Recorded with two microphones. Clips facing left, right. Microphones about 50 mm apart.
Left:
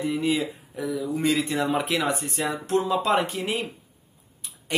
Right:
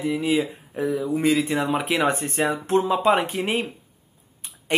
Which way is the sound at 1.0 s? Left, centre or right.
Centre.